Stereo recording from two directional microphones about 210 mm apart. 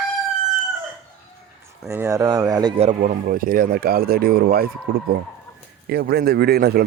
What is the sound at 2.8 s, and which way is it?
Speech, 35° right (ahead or behind).